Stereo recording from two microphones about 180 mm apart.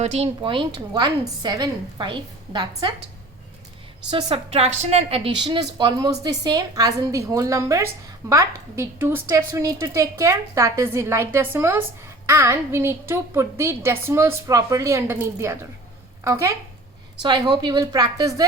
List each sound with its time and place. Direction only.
0.0 s a woman's voice: 35° right (ahead or behind)
4.1 s a woman's voice: 30° right (ahead or behind)